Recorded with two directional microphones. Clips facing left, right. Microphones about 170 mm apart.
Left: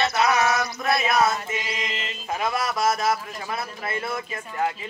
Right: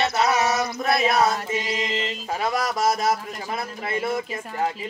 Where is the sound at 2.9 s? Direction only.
20° right (ahead or behind).